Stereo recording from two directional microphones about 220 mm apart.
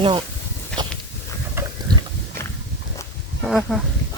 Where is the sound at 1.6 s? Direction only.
10° right (ahead or behind).